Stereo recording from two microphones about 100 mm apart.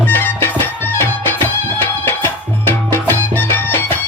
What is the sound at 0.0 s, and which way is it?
Music, 20° left (ahead or behind).